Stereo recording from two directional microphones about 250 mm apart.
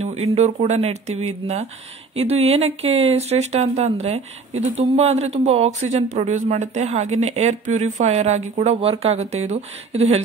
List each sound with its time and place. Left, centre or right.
0.0 s speech: right